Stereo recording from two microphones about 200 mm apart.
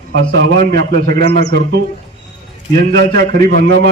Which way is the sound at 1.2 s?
30° left (ahead or behind).